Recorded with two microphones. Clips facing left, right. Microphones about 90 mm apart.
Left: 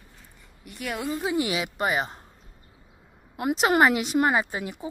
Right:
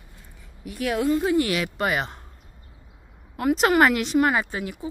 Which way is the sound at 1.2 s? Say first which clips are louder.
Right 4 dB; 15° left (ahead or behind).